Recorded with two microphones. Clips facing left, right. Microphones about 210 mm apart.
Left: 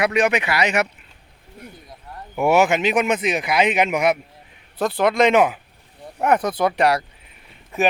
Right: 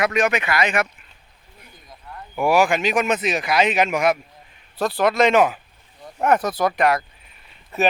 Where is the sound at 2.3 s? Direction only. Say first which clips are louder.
Left 1 dB; 25° left (ahead or behind).